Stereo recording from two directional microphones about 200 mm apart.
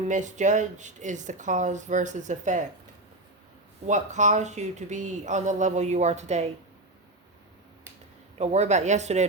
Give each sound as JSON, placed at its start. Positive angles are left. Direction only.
{"t": 0.1, "sound": "speech", "side_deg": -35}
{"t": 3.8, "sound": "speech", "side_deg": -35}
{"t": 8.4, "sound": "speech", "side_deg": -35}